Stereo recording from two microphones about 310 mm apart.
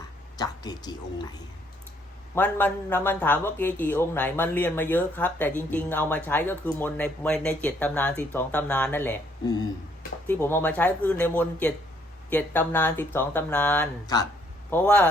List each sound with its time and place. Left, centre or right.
0.3 s a woman's voice: centre
2.3 s speech: centre